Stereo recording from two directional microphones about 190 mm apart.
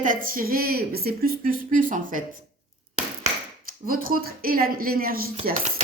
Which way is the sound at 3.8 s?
50° right (ahead or behind).